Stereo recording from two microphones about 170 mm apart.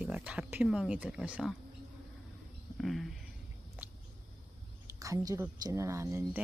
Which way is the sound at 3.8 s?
10° right (ahead or behind).